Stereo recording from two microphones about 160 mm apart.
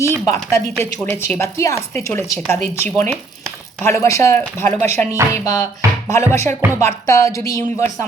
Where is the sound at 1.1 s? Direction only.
15° left (ahead or behind).